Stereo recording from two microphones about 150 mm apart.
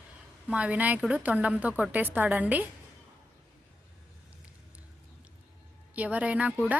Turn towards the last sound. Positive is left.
turn(degrees=-10)  # may be behind; listen again after turning